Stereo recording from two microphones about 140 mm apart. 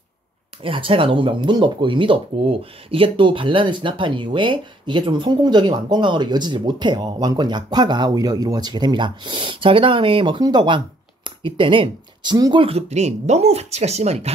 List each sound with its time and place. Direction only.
0.6 s speech: 40° right (ahead or behind)
12.6 s speech: 50° right (ahead or behind)